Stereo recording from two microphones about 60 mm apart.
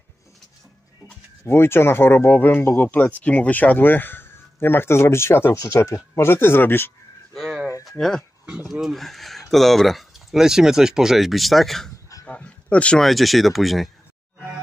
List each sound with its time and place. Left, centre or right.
1.4 s speech: left
7.3 s a sound: centre
8.0 s speech: centre
12.3 s speech: left
13.0 s speech: centre